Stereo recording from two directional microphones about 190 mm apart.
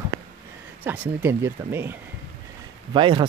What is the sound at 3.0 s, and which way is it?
Speech, 25° right (ahead or behind).